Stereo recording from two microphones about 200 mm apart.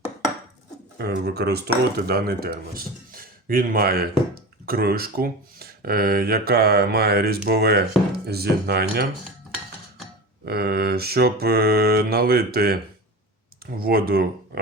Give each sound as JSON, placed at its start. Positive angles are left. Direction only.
{"t": 0.9, "sound": "speech", "side_deg": -55}
{"t": 10.4, "sound": "speech", "side_deg": -55}